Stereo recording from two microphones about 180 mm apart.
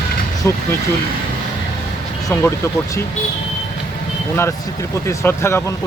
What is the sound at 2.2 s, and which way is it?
Speech, 15° left (ahead or behind).